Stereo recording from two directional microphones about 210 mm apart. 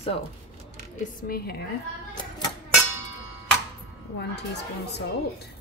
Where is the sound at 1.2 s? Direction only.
45° left (ahead or behind).